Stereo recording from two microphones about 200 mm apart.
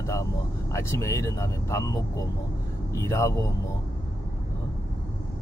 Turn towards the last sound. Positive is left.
turn(degrees=15)  # may be behind; listen again after turning